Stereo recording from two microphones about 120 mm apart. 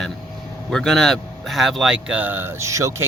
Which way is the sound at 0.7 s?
5° left (ahead or behind).